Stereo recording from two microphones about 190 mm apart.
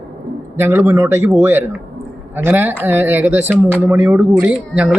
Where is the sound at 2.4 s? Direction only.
10° right (ahead or behind).